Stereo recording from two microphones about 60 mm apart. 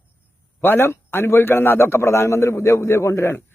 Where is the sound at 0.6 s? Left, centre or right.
Left.